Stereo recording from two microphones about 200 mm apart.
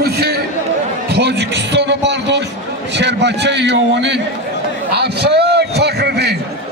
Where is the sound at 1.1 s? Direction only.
55° right (ahead or behind).